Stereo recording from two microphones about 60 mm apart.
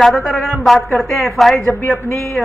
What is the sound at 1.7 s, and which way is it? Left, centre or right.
Speech, left.